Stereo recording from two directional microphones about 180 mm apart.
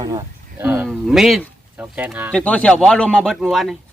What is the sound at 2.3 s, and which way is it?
Speech, 5° left (ahead or behind).